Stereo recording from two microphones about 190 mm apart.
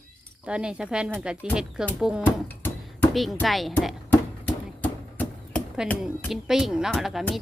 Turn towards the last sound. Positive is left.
turn(degrees=0)  # may be behind; listen again after turning